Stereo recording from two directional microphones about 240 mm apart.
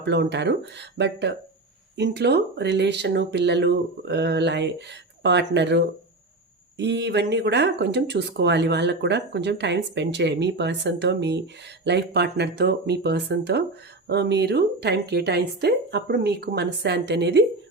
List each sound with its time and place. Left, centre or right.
0.0 s speech: right